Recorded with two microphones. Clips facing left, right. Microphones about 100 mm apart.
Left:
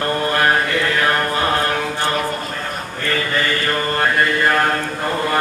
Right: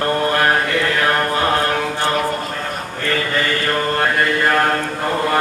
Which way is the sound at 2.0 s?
45° right (ahead or behind).